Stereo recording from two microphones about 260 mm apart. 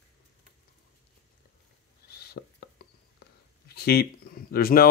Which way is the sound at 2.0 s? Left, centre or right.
Left.